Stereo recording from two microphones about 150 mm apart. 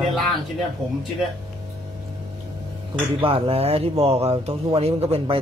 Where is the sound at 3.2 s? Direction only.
40° right (ahead or behind).